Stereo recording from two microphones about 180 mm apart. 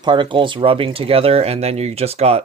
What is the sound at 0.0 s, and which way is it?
Speech, 25° right (ahead or behind).